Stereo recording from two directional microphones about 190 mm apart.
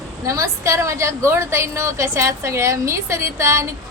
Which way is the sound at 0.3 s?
15° right (ahead or behind).